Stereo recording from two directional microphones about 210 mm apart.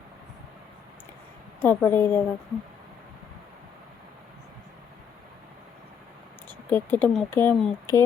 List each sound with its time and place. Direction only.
1.6 s speech: 10° left (ahead or behind)
6.7 s speech: 10° left (ahead or behind)